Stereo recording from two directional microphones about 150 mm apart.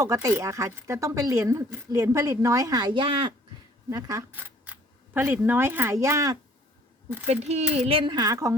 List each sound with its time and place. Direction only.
0.0 s a woman's voice: 20° right (ahead or behind)
7.3 s a woman's voice: 45° right (ahead or behind); by 8.5 s 20° right (ahead or behind)